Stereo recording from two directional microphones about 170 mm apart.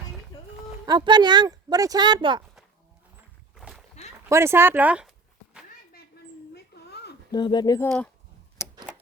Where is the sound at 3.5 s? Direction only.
Centre (ahead or behind).